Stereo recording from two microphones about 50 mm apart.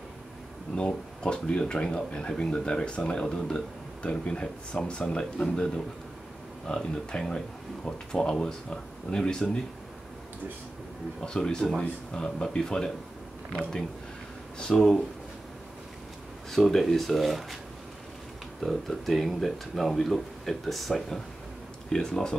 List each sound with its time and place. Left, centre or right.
0.7 s speech: centre
6.7 s speech: centre
11.1 s speech: centre
14.6 s speech: centre
16.4 s speech: centre
18.6 s speech: centre
21.8 s speech: centre